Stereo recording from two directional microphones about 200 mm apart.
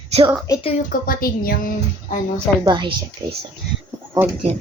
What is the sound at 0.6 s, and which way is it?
Speech, 40° left (ahead or behind).